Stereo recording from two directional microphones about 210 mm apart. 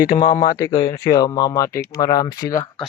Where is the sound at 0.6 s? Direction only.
15° left (ahead or behind).